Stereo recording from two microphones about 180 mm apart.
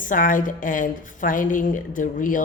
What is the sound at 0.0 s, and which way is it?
A woman's voice, 50° left (ahead or behind).